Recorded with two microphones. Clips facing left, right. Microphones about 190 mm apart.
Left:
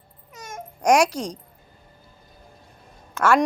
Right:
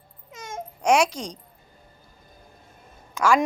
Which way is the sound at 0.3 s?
25° right (ahead or behind).